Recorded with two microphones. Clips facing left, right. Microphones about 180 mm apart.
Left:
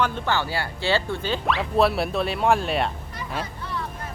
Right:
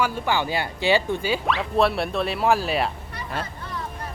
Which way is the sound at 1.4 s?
Centre (ahead or behind).